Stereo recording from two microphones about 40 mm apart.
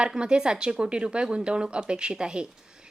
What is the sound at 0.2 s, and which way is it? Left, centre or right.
A woman's voice, centre.